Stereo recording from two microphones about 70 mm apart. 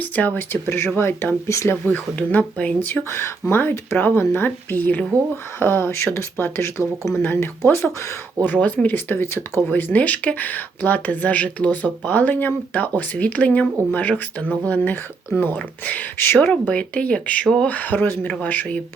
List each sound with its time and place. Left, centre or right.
0.0 s speech: left
1.7 s speech: left
7.2 s speech: left
8.4 s speech: left
16.4 s speech: centre
17.7 s speech: left